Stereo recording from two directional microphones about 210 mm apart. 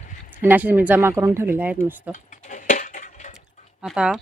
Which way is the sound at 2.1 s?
35° left (ahead or behind).